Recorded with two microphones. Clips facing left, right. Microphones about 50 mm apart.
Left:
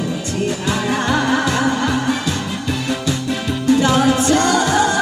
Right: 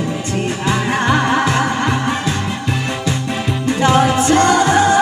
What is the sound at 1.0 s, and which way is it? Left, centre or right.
Music, right.